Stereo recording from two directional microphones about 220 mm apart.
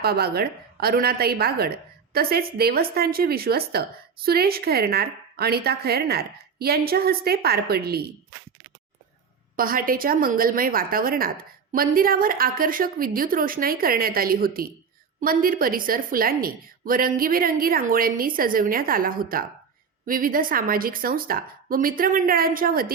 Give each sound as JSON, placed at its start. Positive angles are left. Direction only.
{"t": 0.0, "sound": "a woman's voice", "side_deg": -45}
{"t": 9.6, "sound": "a woman's voice", "side_deg": -40}